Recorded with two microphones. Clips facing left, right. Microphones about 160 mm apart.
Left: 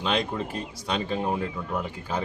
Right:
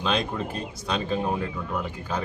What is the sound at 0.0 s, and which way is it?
A man's voice, 20° left (ahead or behind).